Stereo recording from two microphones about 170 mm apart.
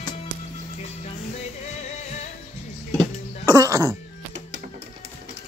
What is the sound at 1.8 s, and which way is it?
Music, 40° left (ahead or behind).